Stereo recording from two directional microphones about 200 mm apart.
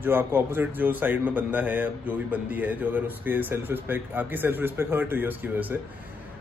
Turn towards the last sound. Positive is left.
turn(degrees=-10)  # may be behind; listen again after turning